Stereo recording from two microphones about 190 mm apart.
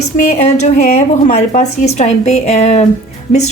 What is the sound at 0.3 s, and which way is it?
A woman's voice, 35° left (ahead or behind).